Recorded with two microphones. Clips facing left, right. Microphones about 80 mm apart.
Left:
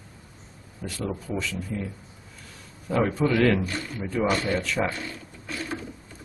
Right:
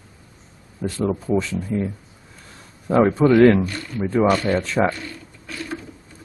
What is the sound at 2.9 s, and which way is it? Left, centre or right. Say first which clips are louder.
Speech: right 8 dB; right.